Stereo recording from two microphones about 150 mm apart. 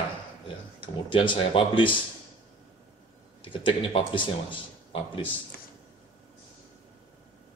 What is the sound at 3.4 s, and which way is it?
Speech, 35° left (ahead or behind).